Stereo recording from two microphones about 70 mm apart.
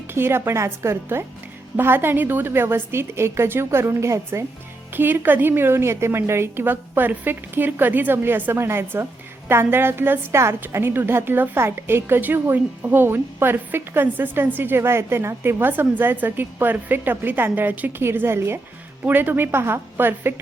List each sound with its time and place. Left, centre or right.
0.1 s a woman's voice: right
4.9 s a woman's voice: right